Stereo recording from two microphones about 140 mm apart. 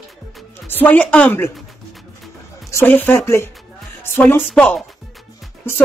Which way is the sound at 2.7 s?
15° left (ahead or behind).